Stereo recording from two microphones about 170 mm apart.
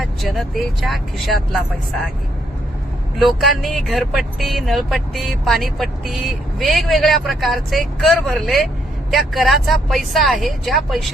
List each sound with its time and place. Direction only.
0.0 s speech: centre (ahead or behind)
3.2 s speech: centre (ahead or behind)